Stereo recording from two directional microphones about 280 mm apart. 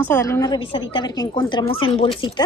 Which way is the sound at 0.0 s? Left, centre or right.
Centre.